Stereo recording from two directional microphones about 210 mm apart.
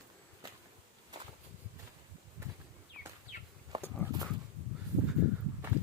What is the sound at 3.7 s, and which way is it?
Horse, 20° right (ahead or behind).